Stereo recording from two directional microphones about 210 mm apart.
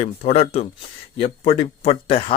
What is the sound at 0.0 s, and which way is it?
Speech, 30° left (ahead or behind).